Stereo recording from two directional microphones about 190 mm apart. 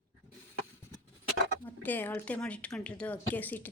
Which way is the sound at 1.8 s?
10° left (ahead or behind).